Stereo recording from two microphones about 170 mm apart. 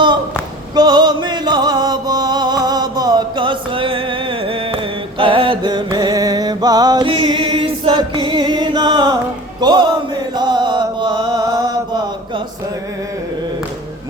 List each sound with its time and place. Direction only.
0.8 s music: 25° right (ahead or behind)
9.6 s chant: 25° right (ahead or behind)